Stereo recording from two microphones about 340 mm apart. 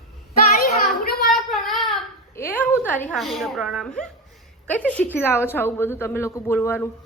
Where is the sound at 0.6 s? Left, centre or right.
Left.